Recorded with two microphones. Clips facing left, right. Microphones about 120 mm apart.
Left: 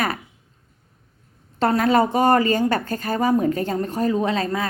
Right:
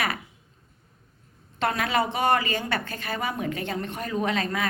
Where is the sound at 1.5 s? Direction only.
35° left (ahead or behind).